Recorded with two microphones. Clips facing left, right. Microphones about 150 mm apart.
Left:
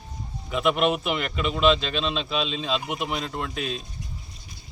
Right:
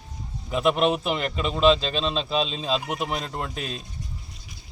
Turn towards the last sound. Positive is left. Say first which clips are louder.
# left 1 dB
turn(degrees=-40)  # may be behind; listen again after turning